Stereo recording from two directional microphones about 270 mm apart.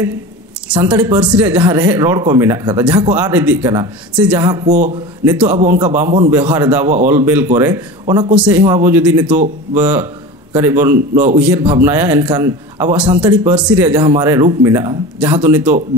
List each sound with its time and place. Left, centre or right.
0.7 s a man's voice: centre
4.6 s speech: right
5.2 s a man's voice: centre